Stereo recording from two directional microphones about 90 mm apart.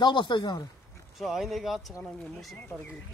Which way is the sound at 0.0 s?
60° left (ahead or behind).